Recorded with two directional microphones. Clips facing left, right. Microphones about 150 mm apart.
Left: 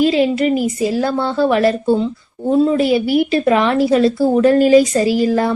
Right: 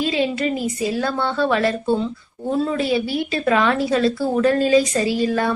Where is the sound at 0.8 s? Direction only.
30° left (ahead or behind).